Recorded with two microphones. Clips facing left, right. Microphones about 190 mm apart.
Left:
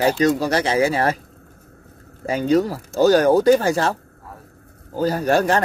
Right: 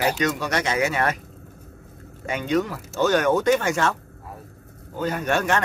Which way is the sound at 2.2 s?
35° left (ahead or behind).